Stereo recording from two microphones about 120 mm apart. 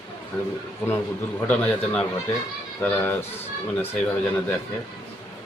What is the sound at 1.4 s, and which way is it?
Speech, 10° left (ahead or behind).